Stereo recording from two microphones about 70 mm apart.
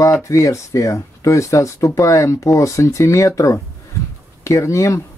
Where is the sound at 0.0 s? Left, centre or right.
Left.